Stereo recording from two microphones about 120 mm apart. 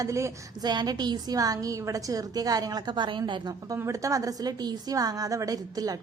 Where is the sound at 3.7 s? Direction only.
25° right (ahead or behind).